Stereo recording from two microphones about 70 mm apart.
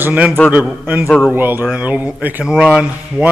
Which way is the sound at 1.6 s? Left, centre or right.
Centre.